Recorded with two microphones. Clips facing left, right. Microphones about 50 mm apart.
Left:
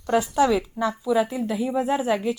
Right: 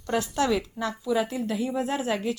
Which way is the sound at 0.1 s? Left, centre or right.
Centre.